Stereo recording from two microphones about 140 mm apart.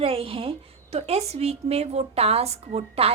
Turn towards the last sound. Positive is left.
turn(degrees=-45)  # may be behind; listen again after turning